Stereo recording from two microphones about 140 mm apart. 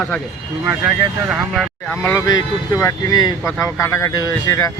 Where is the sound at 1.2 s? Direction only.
Centre (ahead or behind).